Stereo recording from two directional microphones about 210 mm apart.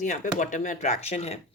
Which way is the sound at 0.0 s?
35° left (ahead or behind).